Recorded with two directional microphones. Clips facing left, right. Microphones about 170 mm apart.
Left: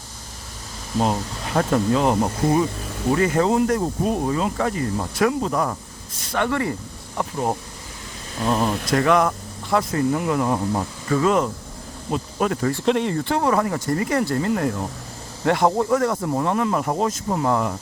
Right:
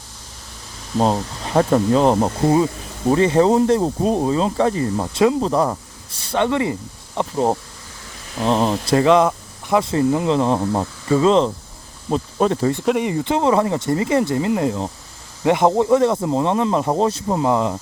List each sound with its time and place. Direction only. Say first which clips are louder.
1.5 s speech: right 4 dB; 35° right (ahead or behind)
12.8 s speech: right 1 dB; 10° right (ahead or behind)